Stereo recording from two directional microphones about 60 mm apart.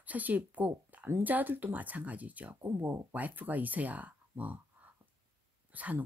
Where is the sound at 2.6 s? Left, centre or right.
Right.